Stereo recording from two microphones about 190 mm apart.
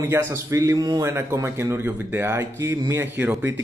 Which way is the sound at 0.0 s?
15° right (ahead or behind).